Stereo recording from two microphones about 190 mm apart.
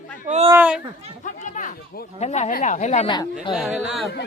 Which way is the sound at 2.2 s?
35° left (ahead or behind).